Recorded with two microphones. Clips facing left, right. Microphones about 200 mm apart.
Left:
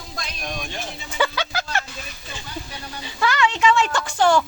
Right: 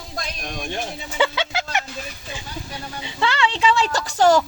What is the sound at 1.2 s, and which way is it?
Music, 25° right (ahead or behind).